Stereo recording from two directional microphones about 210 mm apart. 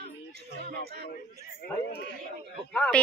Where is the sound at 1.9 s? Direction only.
50° left (ahead or behind).